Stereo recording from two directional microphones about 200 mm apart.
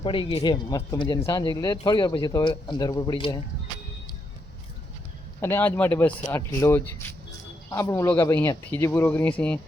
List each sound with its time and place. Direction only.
0.0 s speech: 25° left (ahead or behind)
5.4 s speech: 10° left (ahead or behind)